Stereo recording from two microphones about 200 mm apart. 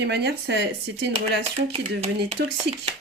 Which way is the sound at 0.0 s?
55° right (ahead or behind).